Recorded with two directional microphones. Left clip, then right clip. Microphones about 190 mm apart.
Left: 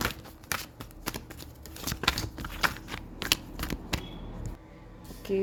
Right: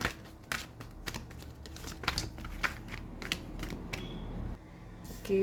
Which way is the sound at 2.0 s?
35° left (ahead or behind).